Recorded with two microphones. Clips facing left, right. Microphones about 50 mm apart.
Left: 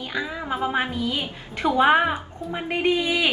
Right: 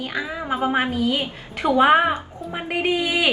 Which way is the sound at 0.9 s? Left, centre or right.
Right.